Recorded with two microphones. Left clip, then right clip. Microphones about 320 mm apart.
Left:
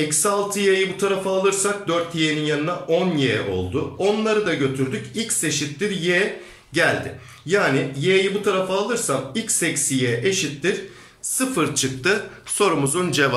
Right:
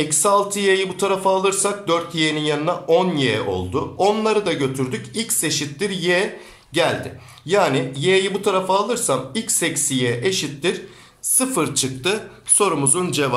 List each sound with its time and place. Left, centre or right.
0.1 s speech: centre